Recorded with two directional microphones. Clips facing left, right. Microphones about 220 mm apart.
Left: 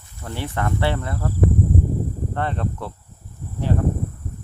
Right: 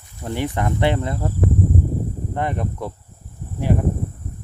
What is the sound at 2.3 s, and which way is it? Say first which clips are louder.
Speech: right 2 dB; 15° right (ahead or behind).